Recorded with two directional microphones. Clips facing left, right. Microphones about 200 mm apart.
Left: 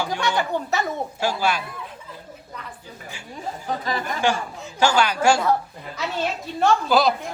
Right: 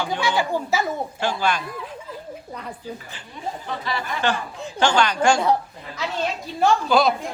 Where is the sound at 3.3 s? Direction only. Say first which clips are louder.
Left 1 dB; 45° left (ahead or behind).